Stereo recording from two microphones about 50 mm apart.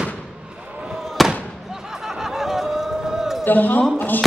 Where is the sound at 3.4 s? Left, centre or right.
Left.